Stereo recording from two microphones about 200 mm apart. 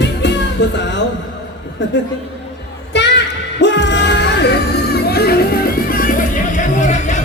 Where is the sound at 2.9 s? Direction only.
60° left (ahead or behind).